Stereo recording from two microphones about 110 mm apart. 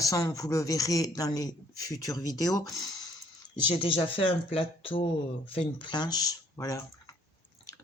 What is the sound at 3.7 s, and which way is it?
Speech, 55° left (ahead or behind).